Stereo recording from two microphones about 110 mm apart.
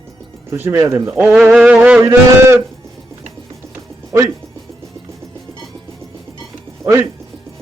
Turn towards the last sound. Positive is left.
turn(degrees=-25)  # may be behind; listen again after turning